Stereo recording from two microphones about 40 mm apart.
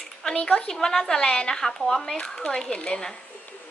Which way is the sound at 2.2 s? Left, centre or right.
Left.